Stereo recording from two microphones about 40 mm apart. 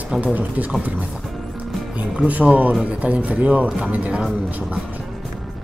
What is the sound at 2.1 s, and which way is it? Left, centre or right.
Speech, right.